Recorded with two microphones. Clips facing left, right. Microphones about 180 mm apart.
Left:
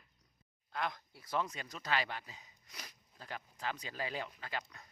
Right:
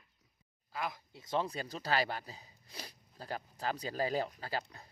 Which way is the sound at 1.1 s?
25° right (ahead or behind).